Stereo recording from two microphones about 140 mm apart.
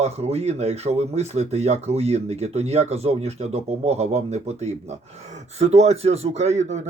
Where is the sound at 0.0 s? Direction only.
50° right (ahead or behind).